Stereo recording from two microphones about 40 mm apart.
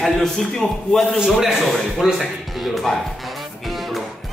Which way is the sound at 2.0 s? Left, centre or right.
Centre.